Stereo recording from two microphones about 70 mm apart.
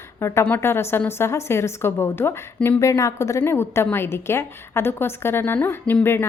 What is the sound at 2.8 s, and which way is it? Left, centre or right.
A woman's voice, left.